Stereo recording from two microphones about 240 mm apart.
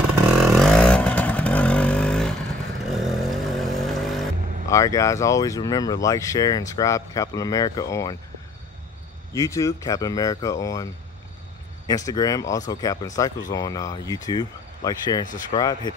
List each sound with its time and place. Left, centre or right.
0.5 s vehicle: centre
4.6 s speech: centre
9.3 s speech: centre
11.9 s speech: centre